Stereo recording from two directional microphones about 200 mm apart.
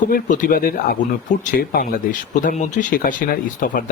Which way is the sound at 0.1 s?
45° left (ahead or behind).